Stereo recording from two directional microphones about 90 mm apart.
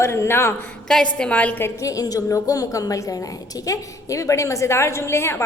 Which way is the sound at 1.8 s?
40° left (ahead or behind).